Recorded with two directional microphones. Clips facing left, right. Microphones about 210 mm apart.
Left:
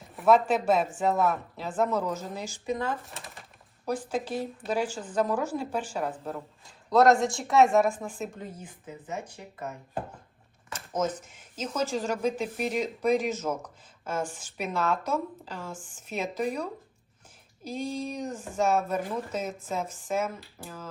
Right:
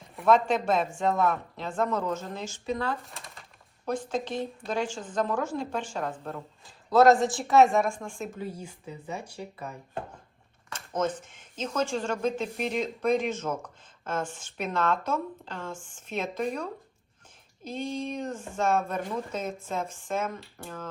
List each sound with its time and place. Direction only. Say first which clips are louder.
0.2 s a woman's voice: left 1 dB; 5° left (ahead or behind)
2.6 s speech: even; 15° left (ahead or behind)
3.8 s a woman's voice: even; 5° left (ahead or behind)
10.7 s speech: even; 5° left (ahead or behind)